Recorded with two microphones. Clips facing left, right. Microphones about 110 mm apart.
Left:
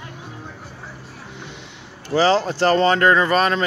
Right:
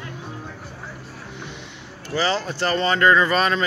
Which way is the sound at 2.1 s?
45° left (ahead or behind).